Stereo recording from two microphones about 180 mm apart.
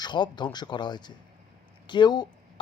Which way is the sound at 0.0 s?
25° left (ahead or behind).